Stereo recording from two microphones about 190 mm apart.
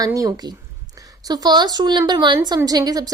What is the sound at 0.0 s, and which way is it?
A woman's voice, 20° right (ahead or behind).